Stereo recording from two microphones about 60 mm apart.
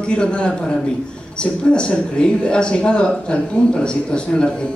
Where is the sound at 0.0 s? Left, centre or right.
Centre.